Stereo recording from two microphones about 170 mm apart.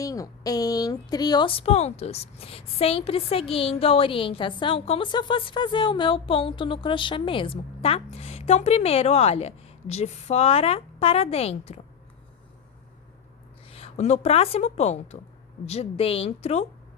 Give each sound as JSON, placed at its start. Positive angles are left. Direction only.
{"t": 0.0, "sound": "a woman's voice", "side_deg": 20}
{"t": 13.7, "sound": "a woman's voice", "side_deg": 35}